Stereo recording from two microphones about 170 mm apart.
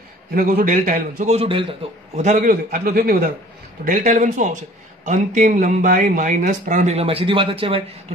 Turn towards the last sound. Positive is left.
turn(degrees=-30)  # may be behind; listen again after turning